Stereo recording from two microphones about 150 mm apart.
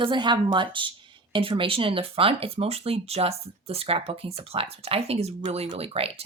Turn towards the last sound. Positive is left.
turn(degrees=-40)  # may be behind; listen again after turning